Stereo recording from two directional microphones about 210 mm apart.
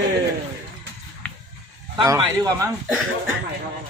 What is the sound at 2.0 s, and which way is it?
Speech, 20° right (ahead or behind).